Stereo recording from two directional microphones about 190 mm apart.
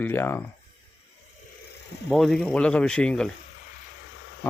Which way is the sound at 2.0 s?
Centre (ahead or behind).